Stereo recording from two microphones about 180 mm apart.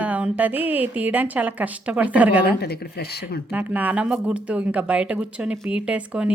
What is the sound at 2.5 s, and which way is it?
Speech, 60° left (ahead or behind).